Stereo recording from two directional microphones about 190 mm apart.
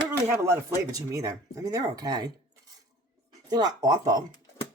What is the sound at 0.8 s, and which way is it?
Speech, 15° right (ahead or behind).